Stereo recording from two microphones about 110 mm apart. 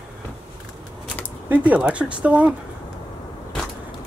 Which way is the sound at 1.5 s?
15° right (ahead or behind).